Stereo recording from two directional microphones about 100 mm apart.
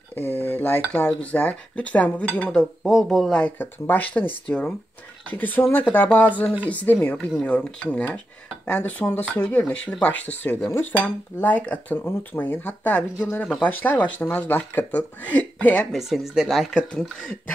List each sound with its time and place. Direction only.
0.1 s dishes: 20° left (ahead or behind)
0.9 s speech: 10° left (ahead or behind)
2.8 s speech: centre (ahead or behind)
15.9 s speech: 5° right (ahead or behind)